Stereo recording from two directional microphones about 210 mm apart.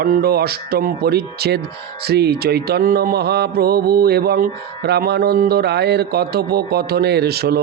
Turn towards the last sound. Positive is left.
turn(degrees=-50)  # may be behind; listen again after turning